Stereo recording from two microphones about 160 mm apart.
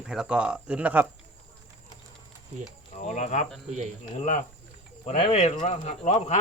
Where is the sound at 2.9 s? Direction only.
50° left (ahead or behind).